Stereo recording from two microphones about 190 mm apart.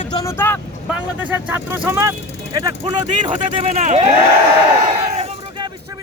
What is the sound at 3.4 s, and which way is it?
Speech, 40° right (ahead or behind).